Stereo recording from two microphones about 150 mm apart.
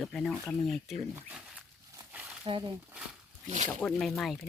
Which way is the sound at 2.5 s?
35° right (ahead or behind).